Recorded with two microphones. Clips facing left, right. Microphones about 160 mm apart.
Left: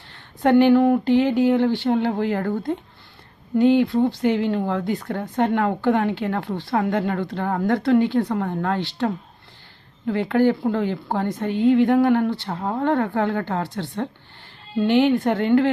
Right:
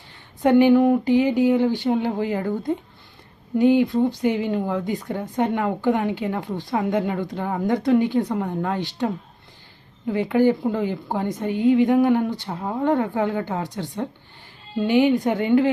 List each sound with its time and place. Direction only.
0.4 s a woman's voice: 10° right (ahead or behind)
4.2 s a woman's voice: 10° right (ahead or behind)